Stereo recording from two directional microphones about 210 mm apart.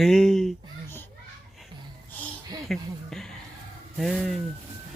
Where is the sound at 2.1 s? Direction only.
5° left (ahead or behind).